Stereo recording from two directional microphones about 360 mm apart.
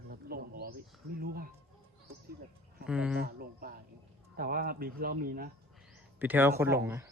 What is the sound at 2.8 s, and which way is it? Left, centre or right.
Speech, centre.